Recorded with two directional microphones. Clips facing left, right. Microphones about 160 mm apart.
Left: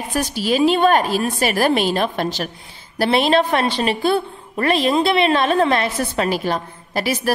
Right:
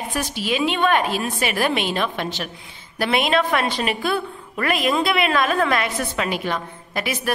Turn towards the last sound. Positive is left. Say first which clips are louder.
# left 4 dB
turn(degrees=35)  # may be behind; listen again after turning